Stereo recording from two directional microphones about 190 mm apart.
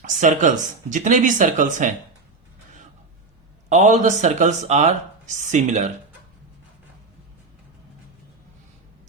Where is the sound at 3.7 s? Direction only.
40° right (ahead or behind).